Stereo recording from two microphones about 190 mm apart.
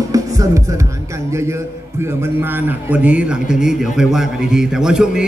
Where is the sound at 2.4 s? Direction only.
10° right (ahead or behind).